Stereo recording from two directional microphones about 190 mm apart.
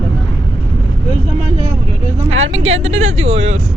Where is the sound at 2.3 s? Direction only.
90° right.